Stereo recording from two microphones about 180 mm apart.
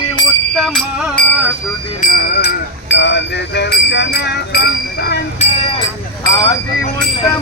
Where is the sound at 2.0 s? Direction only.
50° left (ahead or behind).